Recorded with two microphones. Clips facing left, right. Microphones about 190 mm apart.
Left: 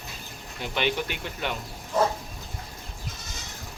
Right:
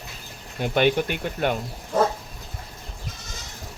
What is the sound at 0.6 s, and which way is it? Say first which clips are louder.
Speech: right 7 dB; 50° right (ahead or behind).